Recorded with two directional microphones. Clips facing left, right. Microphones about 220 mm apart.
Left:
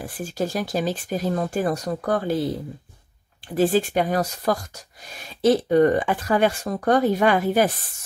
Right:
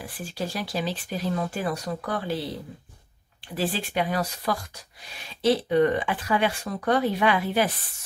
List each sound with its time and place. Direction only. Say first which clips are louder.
0.0 s speech: left 6 dB; 45° left (ahead or behind)
3.5 s speech: left 8 dB; 45° left (ahead or behind)